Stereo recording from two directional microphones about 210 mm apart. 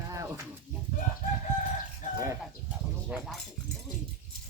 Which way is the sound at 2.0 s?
35° left (ahead or behind).